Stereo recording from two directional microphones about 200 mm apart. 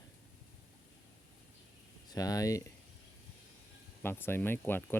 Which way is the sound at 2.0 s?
20° left (ahead or behind).